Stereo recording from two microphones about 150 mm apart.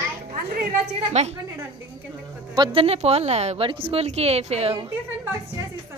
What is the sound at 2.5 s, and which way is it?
Speech, 35° right (ahead or behind).